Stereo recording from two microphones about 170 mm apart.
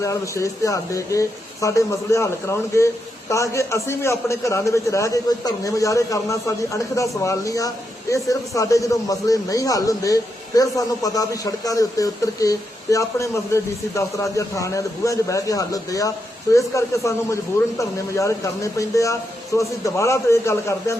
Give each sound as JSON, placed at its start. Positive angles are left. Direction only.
{"t": 0.0, "sound": "a man's voice", "side_deg": 20}